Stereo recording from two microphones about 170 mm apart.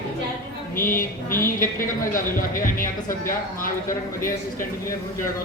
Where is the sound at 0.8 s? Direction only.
55° left (ahead or behind).